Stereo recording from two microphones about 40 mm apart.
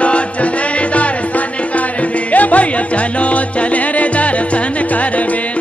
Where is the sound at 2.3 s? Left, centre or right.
Left.